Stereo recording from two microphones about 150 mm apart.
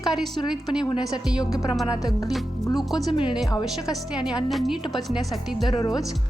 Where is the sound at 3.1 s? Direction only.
35° left (ahead or behind).